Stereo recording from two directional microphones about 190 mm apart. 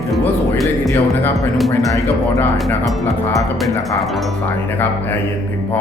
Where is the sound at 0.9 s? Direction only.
10° left (ahead or behind).